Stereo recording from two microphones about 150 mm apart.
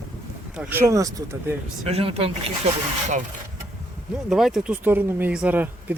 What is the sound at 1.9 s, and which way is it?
Speech, 40° right (ahead or behind).